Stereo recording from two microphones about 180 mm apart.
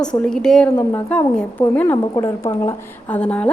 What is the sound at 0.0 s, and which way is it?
A woman's voice, 5° left (ahead or behind).